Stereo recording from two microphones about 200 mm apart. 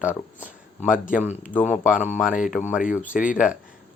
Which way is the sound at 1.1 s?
10° right (ahead or behind).